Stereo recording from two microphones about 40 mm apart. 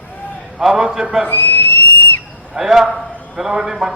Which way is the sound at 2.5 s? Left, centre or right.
Centre.